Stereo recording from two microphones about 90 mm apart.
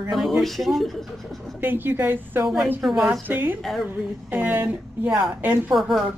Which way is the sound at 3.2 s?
20° right (ahead or behind).